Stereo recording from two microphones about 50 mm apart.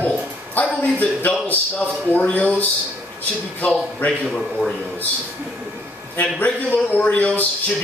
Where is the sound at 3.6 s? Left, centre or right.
Left.